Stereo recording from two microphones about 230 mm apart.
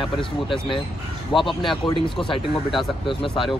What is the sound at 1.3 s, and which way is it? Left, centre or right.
Speech, left.